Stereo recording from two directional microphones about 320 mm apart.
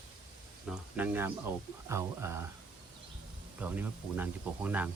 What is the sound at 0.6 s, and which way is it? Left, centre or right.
Speech, centre.